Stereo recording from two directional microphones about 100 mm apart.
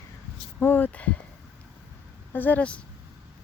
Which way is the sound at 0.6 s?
20° left (ahead or behind).